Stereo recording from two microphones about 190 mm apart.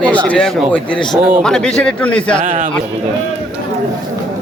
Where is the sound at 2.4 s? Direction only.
40° right (ahead or behind).